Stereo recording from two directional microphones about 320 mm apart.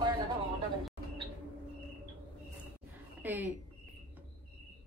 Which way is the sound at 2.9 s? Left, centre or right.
Centre.